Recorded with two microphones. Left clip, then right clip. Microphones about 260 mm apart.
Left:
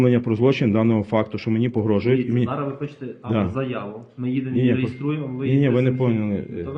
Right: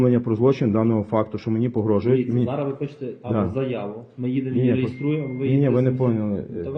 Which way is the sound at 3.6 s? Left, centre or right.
Centre.